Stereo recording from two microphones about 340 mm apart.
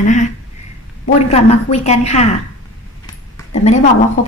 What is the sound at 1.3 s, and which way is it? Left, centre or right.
Speech, centre.